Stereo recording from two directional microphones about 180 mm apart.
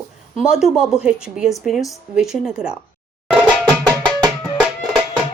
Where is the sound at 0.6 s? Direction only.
Centre (ahead or behind).